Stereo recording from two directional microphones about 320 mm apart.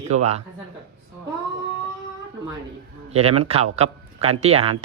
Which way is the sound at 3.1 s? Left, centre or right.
Centre.